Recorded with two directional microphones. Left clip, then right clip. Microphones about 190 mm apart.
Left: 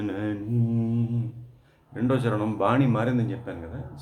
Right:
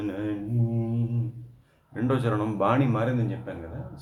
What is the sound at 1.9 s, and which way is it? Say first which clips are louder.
A man's voice: left 1 dB; 5° right (ahead or behind).